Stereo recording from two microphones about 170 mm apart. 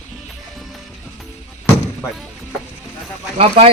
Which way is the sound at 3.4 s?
35° right (ahead or behind).